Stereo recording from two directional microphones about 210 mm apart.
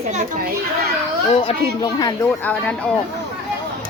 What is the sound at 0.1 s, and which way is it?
Children playing, 35° right (ahead or behind).